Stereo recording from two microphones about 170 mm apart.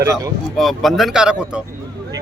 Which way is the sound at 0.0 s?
20° right (ahead or behind).